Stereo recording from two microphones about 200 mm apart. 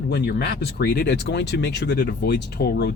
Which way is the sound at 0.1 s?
55° left (ahead or behind).